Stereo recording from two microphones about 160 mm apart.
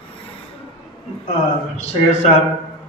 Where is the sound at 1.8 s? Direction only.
45° left (ahead or behind).